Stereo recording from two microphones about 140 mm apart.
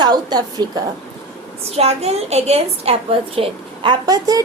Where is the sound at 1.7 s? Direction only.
50° right (ahead or behind).